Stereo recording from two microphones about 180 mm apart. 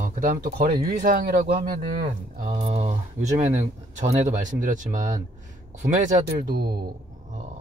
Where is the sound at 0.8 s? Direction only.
50° right (ahead or behind).